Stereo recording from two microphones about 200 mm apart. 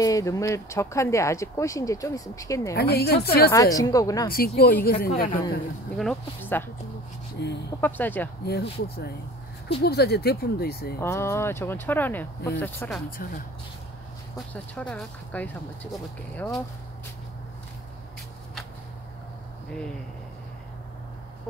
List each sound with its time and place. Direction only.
0.0 s speech: 15° left (ahead or behind)
2.7 s speech: 50° left (ahead or behind)
3.5 s speech: 15° left (ahead or behind)
4.3 s speech: 50° left (ahead or behind)
5.9 s speech: 5° left (ahead or behind)
7.3 s speech: 60° left (ahead or behind)
7.8 s speech: 10° left (ahead or behind)
8.5 s speech: 55° left (ahead or behind)
11.0 s speech: 15° left (ahead or behind)
14.5 s speech: 5° left (ahead or behind)